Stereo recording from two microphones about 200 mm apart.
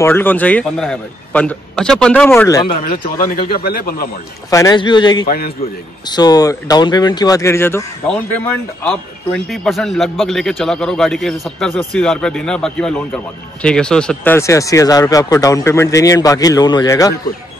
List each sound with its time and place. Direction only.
0.0 s a man's voice: 10° left (ahead or behind)
2.7 s speech: 45° left (ahead or behind)
4.5 s a man's voice: 15° left (ahead or behind)